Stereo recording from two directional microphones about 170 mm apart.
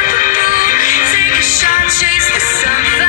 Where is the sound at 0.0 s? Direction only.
50° left (ahead or behind).